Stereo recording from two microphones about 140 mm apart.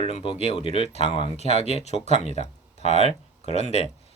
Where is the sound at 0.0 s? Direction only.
40° left (ahead or behind).